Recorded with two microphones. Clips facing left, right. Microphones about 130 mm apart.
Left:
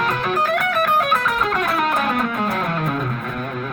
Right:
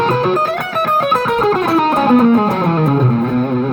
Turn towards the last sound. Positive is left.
turn(degrees=-30)  # may be behind; listen again after turning